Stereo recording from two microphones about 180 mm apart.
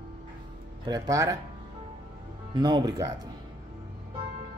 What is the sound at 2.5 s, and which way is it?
Speech, 25° right (ahead or behind).